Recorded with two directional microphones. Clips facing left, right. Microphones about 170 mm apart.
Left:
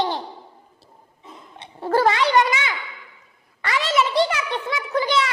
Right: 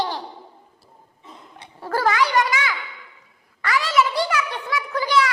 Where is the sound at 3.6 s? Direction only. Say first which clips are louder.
Right 1 dB; 25° left (ahead or behind).